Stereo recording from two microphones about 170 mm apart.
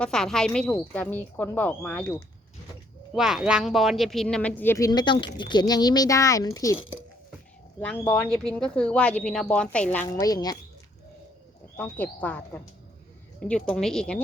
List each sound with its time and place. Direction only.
0.0 s speech: 5° left (ahead or behind)
3.2 s speech: 5° right (ahead or behind); by 4.9 s 15° left (ahead or behind)
4.9 s speech: 25° left (ahead or behind)
7.8 s speech: 10° left (ahead or behind)
10.1 s speech: 20° left (ahead or behind)
11.8 s speech: 10° left (ahead or behind)